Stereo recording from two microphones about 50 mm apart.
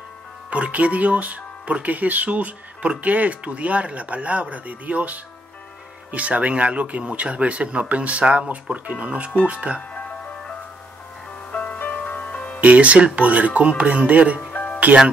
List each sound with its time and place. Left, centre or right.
0.5 s speech: right
9.8 s music: left
11.5 s music: left
12.5 s speech: right
14.5 s music: left